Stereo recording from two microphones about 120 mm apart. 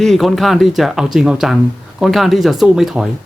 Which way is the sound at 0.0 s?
Centre (ahead or behind).